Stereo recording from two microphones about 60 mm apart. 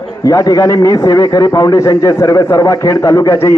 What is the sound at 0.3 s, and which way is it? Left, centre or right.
A man's voice, left.